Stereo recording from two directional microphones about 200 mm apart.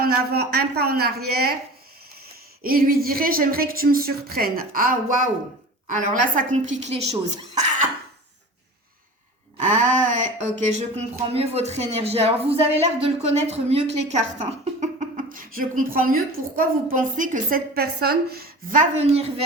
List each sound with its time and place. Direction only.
0.0 s a woman's voice: 50° right (ahead or behind)
2.6 s a woman's voice: 45° right (ahead or behind)
9.6 s speech: 35° right (ahead or behind)
14.3 s a sound: 35° right (ahead or behind)
16.6 s speech: 40° right (ahead or behind)